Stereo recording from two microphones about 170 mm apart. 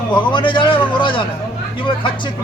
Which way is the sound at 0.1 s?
30° left (ahead or behind).